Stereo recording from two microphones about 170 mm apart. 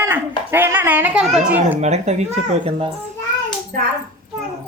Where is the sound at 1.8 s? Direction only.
40° right (ahead or behind).